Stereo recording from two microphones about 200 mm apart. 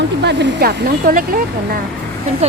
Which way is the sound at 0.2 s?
55° right (ahead or behind).